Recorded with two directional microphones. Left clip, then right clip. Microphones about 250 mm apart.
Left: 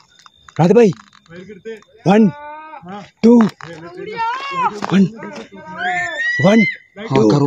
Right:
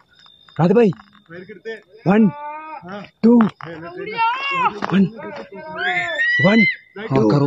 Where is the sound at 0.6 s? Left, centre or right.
Left.